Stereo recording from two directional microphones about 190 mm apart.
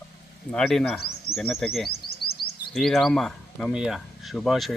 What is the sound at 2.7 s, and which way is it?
Speech, centre (ahead or behind).